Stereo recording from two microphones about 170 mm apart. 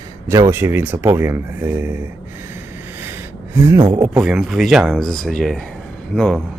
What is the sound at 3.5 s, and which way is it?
Speech, 15° right (ahead or behind).